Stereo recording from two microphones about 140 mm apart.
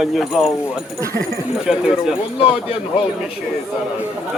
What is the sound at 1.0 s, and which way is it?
Speech, 20° right (ahead or behind).